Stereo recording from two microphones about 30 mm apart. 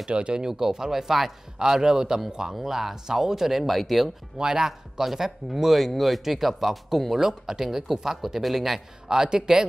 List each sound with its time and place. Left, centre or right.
0.1 s speech: right
0.5 s speech: centre
1.6 s a man's voice: right
2.5 s speech: centre
4.4 s a man's voice: right; by 8.8 s centre
9.1 s a man's voice: right